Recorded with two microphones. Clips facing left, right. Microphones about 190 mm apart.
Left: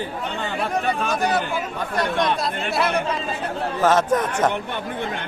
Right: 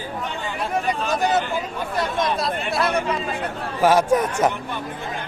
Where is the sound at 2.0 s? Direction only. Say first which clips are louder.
Left 1 dB; centre (ahead or behind).